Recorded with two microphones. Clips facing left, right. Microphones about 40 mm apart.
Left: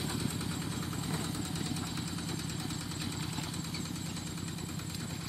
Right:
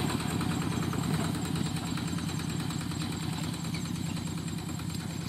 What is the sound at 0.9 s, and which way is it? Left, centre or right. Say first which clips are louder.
Vehicle: right 5 dB; right.